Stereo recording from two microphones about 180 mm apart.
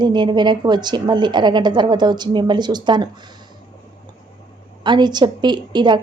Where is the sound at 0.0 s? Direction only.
25° right (ahead or behind).